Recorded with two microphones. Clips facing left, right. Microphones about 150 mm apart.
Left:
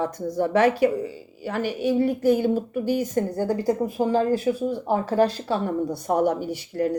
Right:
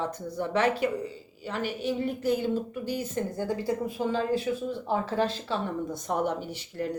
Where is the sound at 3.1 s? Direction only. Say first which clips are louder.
Left 6 dB; 40° left (ahead or behind).